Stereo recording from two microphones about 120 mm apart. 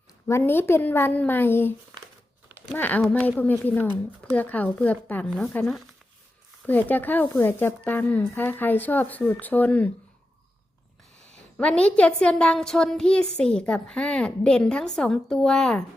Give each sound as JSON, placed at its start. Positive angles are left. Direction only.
{"t": 0.3, "sound": "a woman's voice", "side_deg": 20}
{"t": 2.7, "sound": "a woman's voice", "side_deg": 15}
{"t": 11.5, "sound": "a woman's voice", "side_deg": 10}